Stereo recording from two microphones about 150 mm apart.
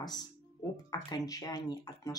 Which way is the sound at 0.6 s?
25° left (ahead or behind).